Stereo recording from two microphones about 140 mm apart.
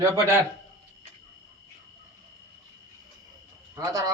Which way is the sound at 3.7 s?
25° right (ahead or behind).